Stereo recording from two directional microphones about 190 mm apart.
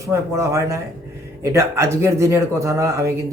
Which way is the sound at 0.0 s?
15° right (ahead or behind).